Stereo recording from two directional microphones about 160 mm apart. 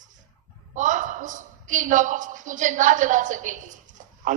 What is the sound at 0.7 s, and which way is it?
A woman's voice, 50° right (ahead or behind).